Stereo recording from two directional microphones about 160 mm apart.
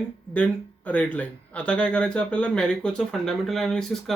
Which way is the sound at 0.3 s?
10° left (ahead or behind).